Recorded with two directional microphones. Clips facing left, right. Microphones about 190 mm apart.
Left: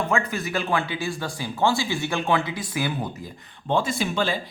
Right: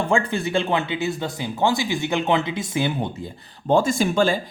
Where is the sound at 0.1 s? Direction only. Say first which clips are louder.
Right 4 dB; 30° right (ahead or behind).